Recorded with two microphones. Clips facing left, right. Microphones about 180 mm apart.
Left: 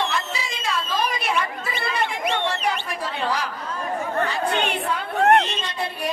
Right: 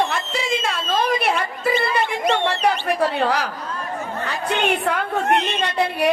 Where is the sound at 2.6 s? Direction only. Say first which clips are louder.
Right 7 dB; 65° right (ahead or behind).